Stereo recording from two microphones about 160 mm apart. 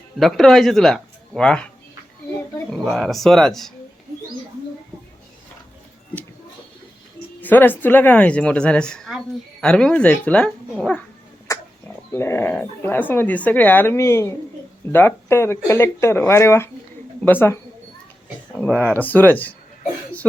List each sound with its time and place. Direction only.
0.2 s speech: centre (ahead or behind)
7.4 s speech: 10° left (ahead or behind)
12.1 s speech: 15° left (ahead or behind)